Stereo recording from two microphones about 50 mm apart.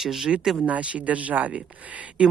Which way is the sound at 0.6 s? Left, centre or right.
Right.